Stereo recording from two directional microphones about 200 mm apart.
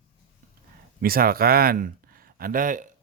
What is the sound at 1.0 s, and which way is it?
Speech, 45° right (ahead or behind).